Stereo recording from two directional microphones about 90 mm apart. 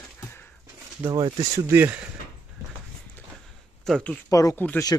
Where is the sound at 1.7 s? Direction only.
20° right (ahead or behind).